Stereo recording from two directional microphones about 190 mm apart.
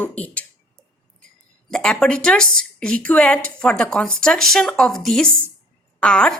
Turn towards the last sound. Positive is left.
turn(degrees=5)  # may be behind; listen again after turning